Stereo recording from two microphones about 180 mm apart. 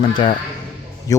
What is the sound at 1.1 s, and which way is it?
Speech, 20° left (ahead or behind).